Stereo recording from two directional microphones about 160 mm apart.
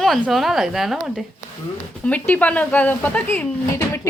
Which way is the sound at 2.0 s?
10° left (ahead or behind).